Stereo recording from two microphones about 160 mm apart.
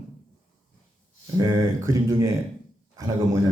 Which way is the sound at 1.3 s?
25° right (ahead or behind).